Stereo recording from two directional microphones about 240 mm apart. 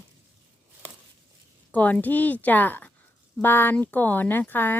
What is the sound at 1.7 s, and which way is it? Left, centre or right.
Speech, centre.